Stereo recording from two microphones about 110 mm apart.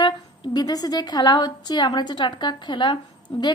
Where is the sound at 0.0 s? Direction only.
40° left (ahead or behind).